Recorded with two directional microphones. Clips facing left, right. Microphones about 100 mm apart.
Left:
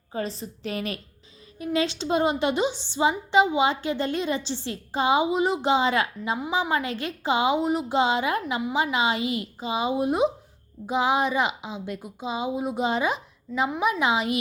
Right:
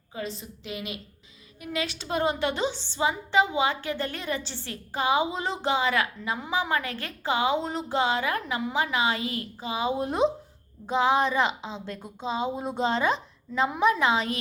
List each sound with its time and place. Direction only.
0.1 s a woman's voice: 40° left (ahead or behind)
1.5 s a woman's voice: 30° left (ahead or behind)